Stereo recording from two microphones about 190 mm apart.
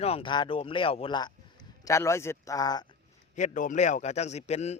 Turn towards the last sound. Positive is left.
turn(degrees=35)  # may be behind; listen again after turning